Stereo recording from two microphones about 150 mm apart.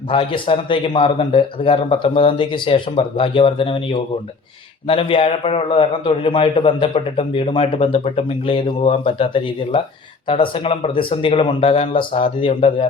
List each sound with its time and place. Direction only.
0.1 s a man's voice: 35° left (ahead or behind)